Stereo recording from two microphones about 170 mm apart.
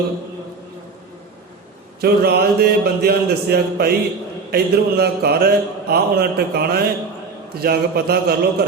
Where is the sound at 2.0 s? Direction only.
65° right (ahead or behind).